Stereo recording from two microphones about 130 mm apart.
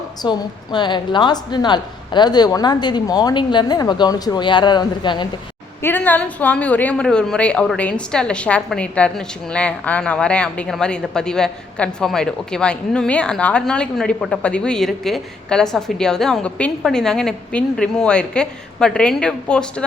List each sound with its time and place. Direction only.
0.2 s a woman's voice: 35° left (ahead or behind)
5.8 s a woman's voice: 15° left (ahead or behind)